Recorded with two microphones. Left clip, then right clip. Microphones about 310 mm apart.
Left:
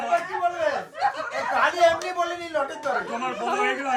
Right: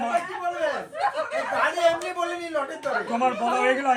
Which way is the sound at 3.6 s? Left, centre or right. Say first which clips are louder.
Right 4 dB; centre.